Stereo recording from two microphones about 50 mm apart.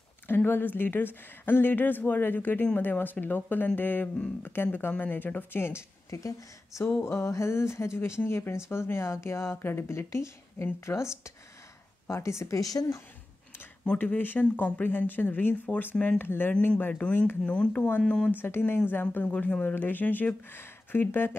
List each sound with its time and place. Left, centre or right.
0.3 s a woman's voice: left
4.9 s speech: left
7.0 s speech: left
7.2 s speech: left
13.9 s a woman's voice: left
17.5 s speech: left
18.3 s a woman's voice: left